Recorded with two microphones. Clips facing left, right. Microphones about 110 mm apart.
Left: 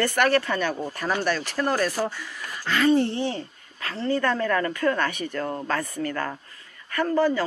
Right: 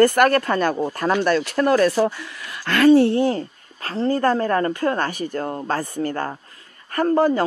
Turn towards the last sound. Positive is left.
turn(degrees=-40)  # may be behind; listen again after turning